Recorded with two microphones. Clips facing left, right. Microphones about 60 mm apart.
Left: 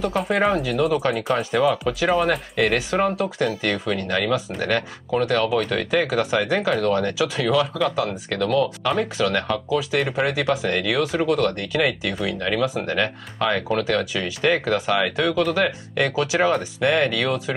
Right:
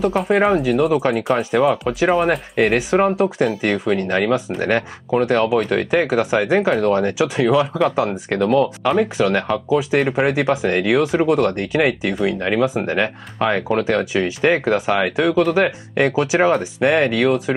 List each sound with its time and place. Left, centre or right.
0.0 s speech: centre